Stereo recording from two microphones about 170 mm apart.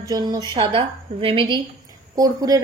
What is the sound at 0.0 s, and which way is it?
A woman's voice, 25° right (ahead or behind).